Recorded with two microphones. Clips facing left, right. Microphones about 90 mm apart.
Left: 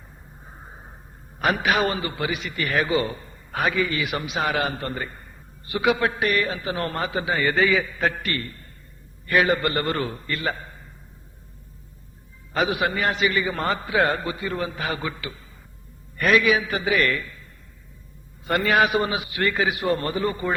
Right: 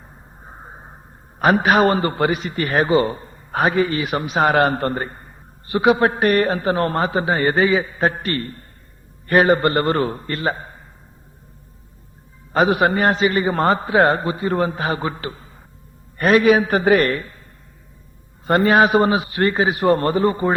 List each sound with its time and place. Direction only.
0.4 s music: 35° right (ahead or behind)
1.4 s a man's voice: 35° right (ahead or behind)
12.5 s a man's voice: 40° right (ahead or behind)
18.4 s a man's voice: 35° right (ahead or behind)